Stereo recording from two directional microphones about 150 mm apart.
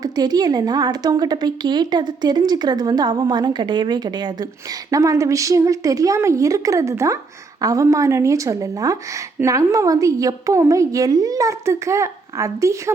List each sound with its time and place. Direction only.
0.0 s a woman's voice: 25° right (ahead or behind)